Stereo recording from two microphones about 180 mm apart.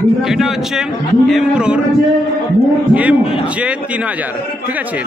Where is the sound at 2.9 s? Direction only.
5° right (ahead or behind).